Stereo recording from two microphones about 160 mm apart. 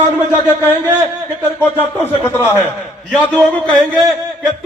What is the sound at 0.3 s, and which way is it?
A man's voice, 15° left (ahead or behind).